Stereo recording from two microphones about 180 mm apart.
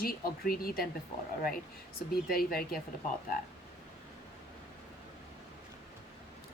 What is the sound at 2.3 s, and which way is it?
Speech, 55° left (ahead or behind).